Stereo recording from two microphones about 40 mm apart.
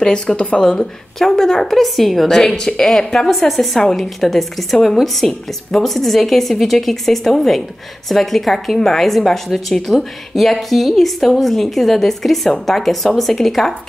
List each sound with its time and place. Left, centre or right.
0.0 s speech: centre
1.2 s a woman's voice: centre
3.3 s a woman's voice: centre